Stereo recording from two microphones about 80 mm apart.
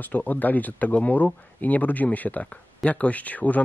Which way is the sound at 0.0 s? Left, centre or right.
Left.